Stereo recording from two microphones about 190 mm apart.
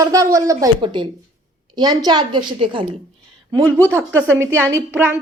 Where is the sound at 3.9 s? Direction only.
10° right (ahead or behind).